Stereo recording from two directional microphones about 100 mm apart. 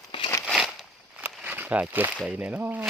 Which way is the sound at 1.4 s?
15° right (ahead or behind).